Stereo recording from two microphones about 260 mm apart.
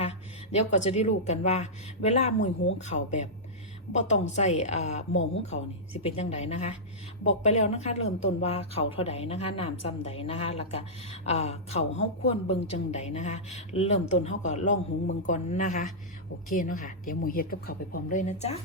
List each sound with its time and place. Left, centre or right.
0.0 s a woman's voice: left
4.3 s a woman's voice: left